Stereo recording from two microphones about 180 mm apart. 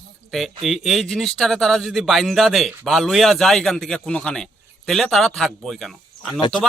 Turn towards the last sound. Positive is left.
turn(degrees=0)  # may be behind; listen again after turning